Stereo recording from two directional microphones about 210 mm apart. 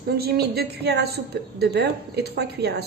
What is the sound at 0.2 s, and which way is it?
Speech, 50° right (ahead or behind).